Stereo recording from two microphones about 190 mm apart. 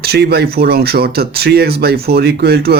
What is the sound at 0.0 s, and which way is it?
Speech, 55° right (ahead or behind).